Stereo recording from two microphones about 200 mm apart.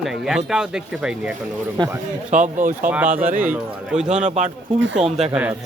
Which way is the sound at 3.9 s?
35° right (ahead or behind).